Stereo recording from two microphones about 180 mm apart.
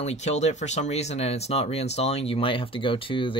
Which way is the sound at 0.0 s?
40° left (ahead or behind).